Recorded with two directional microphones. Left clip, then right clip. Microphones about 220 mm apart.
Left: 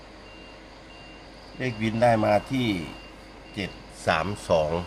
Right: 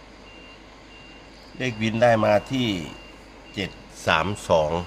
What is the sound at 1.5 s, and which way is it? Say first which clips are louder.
A man's voice: right 3 dB; 25° right (ahead or behind).